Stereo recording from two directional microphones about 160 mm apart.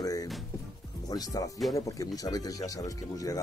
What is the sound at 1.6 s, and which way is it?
Speech, centre (ahead or behind).